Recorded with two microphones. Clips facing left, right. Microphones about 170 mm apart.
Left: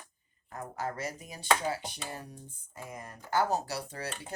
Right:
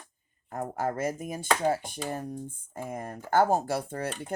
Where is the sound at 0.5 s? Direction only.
50° right (ahead or behind).